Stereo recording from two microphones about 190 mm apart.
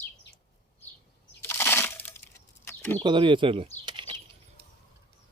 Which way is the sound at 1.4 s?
10° left (ahead or behind).